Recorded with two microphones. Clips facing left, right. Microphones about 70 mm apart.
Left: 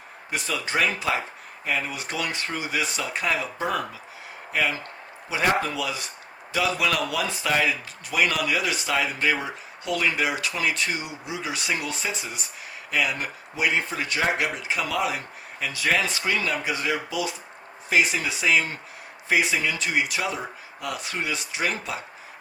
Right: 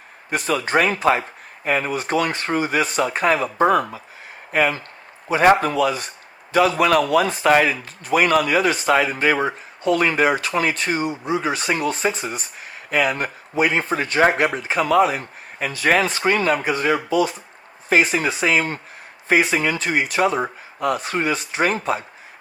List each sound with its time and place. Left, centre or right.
0.3 s speech: right